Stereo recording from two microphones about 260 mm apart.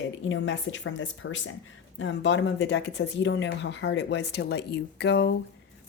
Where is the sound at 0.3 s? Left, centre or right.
Left.